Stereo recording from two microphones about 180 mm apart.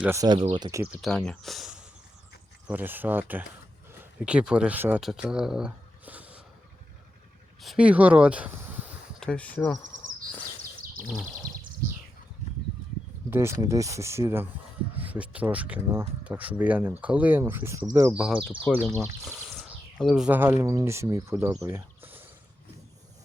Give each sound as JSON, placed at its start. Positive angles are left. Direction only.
{"t": 0.0, "sound": "speech", "side_deg": -15}
{"t": 1.0, "sound": "speech", "side_deg": 5}
{"t": 7.6, "sound": "speech", "side_deg": -5}
{"t": 9.2, "sound": "speech", "side_deg": 5}
{"t": 13.3, "sound": "speech", "side_deg": -15}
{"t": 18.8, "sound": "speech", "side_deg": 5}